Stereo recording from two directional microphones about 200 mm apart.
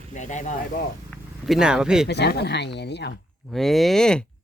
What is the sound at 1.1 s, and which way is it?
Speech, centre (ahead or behind).